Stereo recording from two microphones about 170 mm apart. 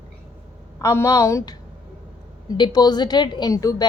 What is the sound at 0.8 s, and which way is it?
Speech, 20° left (ahead or behind).